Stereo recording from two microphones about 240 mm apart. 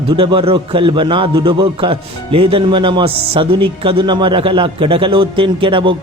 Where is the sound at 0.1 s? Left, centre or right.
Centre.